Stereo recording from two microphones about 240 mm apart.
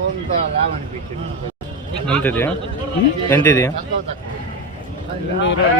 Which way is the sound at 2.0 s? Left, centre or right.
Centre.